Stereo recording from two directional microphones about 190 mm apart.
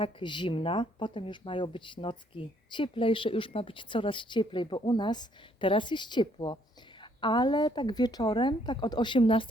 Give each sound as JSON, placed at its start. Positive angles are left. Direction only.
{"t": 0.0, "sound": "speech", "side_deg": 25}